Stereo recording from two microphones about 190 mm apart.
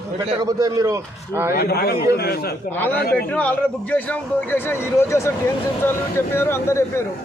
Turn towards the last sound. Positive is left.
turn(degrees=15)  # may be behind; listen again after turning